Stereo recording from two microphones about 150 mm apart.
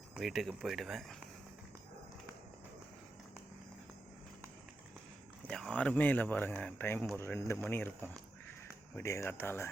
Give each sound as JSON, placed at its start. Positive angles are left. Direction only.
{"t": 0.2, "sound": "speech", "side_deg": 0}
{"t": 5.5, "sound": "speech", "side_deg": 5}